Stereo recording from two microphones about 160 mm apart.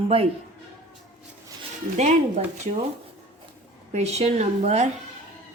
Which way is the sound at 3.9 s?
45° right (ahead or behind).